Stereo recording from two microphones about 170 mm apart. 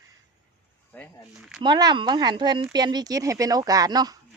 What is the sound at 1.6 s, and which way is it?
Speech, 25° right (ahead or behind).